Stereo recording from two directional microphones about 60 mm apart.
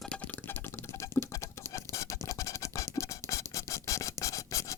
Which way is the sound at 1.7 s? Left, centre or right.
Left.